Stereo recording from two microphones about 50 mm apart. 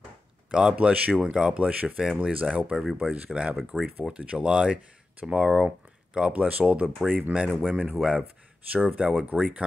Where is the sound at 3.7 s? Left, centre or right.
Centre.